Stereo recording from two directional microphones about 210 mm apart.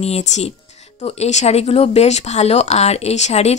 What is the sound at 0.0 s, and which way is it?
Speech, 30° left (ahead or behind).